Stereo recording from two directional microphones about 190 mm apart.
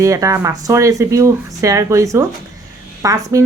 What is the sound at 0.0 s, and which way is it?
Speech, 15° right (ahead or behind).